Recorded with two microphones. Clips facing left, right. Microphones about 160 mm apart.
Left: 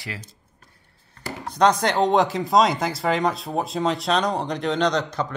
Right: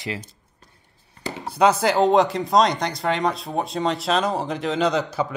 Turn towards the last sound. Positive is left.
turn(degrees=-5)  # may be behind; listen again after turning